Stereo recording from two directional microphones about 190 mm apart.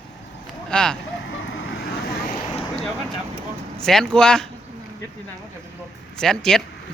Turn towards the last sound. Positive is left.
turn(degrees=5)  # may be behind; listen again after turning